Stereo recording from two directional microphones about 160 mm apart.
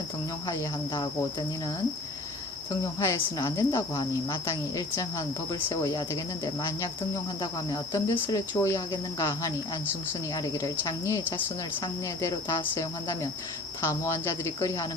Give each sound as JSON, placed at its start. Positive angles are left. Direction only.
{"t": 3.0, "sound": "speech", "side_deg": 15}
{"t": 4.4, "sound": "cricket", "side_deg": 20}
{"t": 12.7, "sound": "speech", "side_deg": 15}